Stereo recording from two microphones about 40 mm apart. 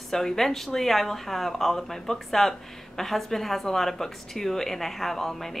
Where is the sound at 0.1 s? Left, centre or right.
Centre.